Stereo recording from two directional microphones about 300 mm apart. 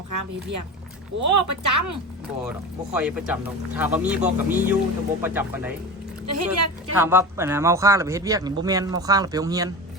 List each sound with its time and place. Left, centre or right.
0.1 s speech: right
2.9 s speech: centre
6.2 s speech: right
6.9 s speech: centre